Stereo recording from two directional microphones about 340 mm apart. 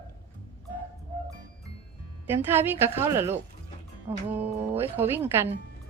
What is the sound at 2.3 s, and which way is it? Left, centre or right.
A woman's voice, centre.